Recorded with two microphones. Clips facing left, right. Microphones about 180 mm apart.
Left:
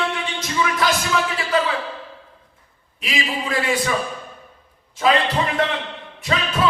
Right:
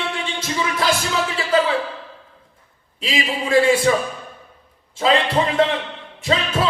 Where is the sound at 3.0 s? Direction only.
30° right (ahead or behind).